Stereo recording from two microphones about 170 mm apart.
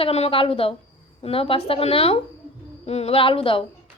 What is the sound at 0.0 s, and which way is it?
A child's voice, 35° left (ahead or behind).